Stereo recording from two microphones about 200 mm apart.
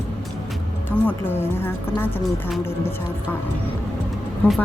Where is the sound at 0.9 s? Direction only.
10° left (ahead or behind).